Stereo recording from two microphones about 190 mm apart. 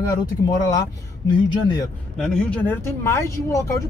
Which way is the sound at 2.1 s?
5° left (ahead or behind).